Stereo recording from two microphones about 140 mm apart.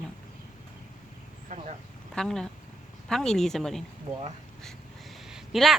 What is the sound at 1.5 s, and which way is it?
Vehicle, 60° right (ahead or behind).